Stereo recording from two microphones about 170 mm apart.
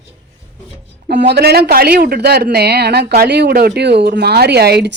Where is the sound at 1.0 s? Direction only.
80° right.